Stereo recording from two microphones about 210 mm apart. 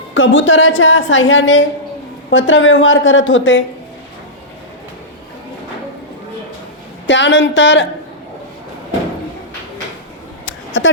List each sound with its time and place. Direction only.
0.1 s a woman's voice: 65° left (ahead or behind)
7.1 s a woman's voice: 60° left (ahead or behind)
10.8 s a woman's voice: 65° left (ahead or behind)